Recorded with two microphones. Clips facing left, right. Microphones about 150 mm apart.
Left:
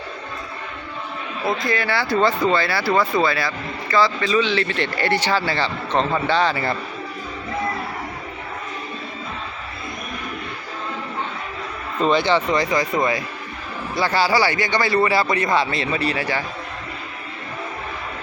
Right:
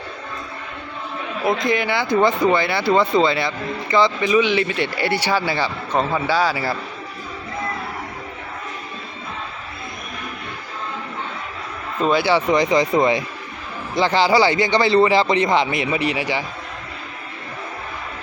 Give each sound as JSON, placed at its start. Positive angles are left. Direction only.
{"t": 1.5, "sound": "speech", "side_deg": -20}
{"t": 12.0, "sound": "a man's voice", "side_deg": -10}